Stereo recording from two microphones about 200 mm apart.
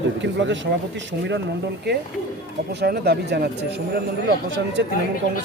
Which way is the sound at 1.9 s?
60° right (ahead or behind).